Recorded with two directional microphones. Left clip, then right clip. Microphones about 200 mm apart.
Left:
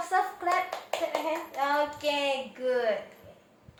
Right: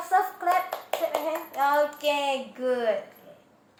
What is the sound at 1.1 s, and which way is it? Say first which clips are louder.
Hands: right 2 dB; 25° right (ahead or behind).